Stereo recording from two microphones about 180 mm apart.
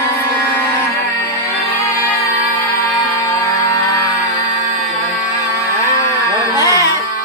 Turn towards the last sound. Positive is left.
turn(degrees=20)  # may be behind; listen again after turning